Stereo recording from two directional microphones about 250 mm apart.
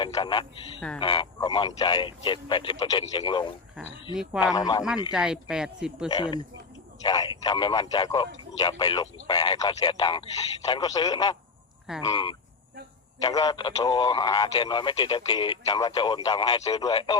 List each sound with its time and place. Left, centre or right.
0.0 s speech: centre
4.5 s speech: centre
5.1 s speech: centre
6.1 s speech: centre